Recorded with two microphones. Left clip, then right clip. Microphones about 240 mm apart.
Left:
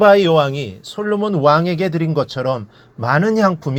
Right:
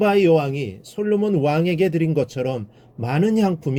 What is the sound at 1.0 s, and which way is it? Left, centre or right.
Speech, left.